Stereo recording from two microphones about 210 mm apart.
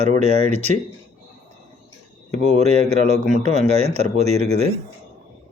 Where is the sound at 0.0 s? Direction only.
35° right (ahead or behind).